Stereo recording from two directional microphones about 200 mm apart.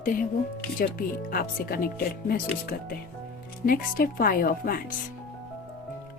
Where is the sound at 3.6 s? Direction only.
45° left (ahead or behind).